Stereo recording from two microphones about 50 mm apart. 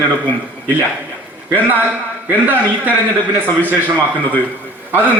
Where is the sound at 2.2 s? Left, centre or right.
Right.